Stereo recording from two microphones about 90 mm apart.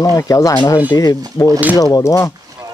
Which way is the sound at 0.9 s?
50° left (ahead or behind).